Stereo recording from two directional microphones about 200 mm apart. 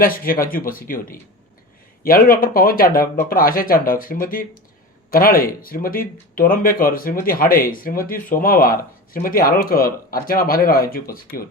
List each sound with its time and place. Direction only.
0.0 s speech: 45° left (ahead or behind)